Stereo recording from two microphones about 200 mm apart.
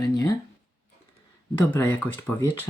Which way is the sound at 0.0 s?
20° left (ahead or behind).